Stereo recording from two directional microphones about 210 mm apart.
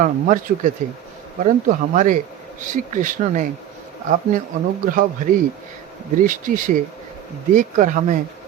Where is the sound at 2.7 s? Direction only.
40° right (ahead or behind).